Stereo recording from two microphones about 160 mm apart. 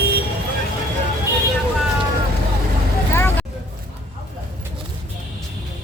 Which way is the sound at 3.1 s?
15° left (ahead or behind).